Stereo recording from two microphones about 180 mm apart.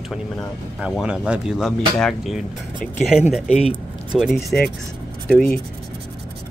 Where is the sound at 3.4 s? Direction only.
35° left (ahead or behind).